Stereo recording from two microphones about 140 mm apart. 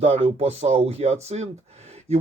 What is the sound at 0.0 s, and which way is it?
Speech, 50° right (ahead or behind).